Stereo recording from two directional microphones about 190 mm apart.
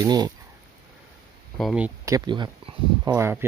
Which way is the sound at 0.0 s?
20° right (ahead or behind).